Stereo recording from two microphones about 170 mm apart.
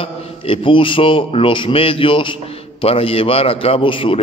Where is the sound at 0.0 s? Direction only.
35° left (ahead or behind).